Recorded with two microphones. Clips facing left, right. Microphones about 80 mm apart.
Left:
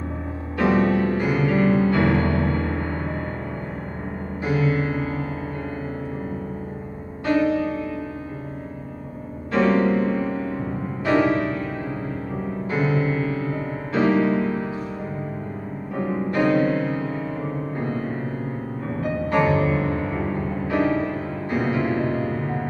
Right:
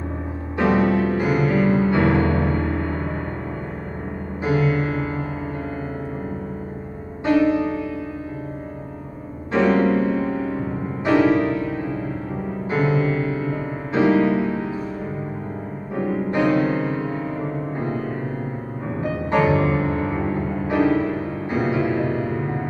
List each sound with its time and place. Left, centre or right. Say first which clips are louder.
0.6 s music: right 1 dB; centre
4.5 s music: right 2 dB; centre
9.5 s music: right 1 dB; centre
12.6 s music: right 2 dB; centre
14.0 s music: right 2 dB; centre
16.3 s music: even; centre
19.3 s music: right 2 dB; centre